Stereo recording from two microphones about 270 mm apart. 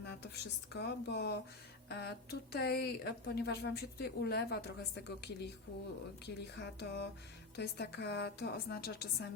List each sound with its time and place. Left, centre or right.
0.0 s a woman's voice: left
6.6 s a woman's voice: left